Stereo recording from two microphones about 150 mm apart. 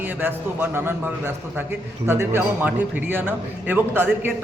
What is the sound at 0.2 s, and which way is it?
Speech, 15° right (ahead or behind).